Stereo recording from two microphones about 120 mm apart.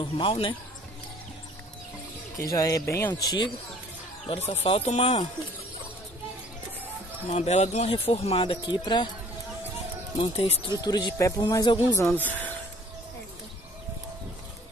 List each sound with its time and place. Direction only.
0.0 s speech: 45° left (ahead or behind)
2.3 s speech: 25° left (ahead or behind)
3.1 s a man's voice: 40° left (ahead or behind)
4.5 s speech: 60° left (ahead or behind)
7.2 s speech: 70° left (ahead or behind); by 8.5 s 50° left (ahead or behind)
8.6 s a man's voice: 40° left (ahead or behind)
10.1 s speech: 55° left (ahead or behind)
10.7 s a man's voice: 35° left (ahead or behind)
11.9 s speech: 25° left (ahead or behind)
12.3 s a sound: 15° left (ahead or behind)